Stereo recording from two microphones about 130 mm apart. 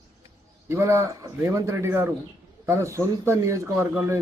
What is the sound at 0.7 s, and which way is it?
Speech, 20° right (ahead or behind).